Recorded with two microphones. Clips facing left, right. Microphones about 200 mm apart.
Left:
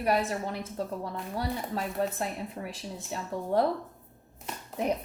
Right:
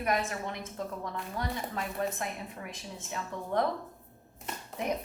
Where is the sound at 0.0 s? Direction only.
35° left (ahead or behind).